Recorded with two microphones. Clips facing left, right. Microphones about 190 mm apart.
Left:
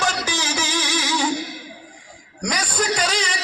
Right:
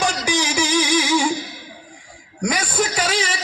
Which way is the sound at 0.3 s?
15° right (ahead or behind).